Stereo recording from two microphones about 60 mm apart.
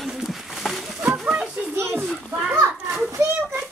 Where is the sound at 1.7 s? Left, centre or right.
Right.